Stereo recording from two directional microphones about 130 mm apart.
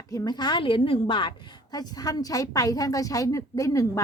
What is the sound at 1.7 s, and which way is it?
A woman's voice, 30° left (ahead or behind).